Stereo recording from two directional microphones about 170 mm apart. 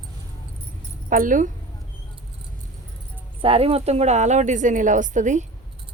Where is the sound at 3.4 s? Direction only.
35° right (ahead or behind).